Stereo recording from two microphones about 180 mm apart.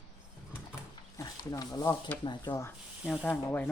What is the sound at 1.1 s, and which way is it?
Speech, 20° left (ahead or behind).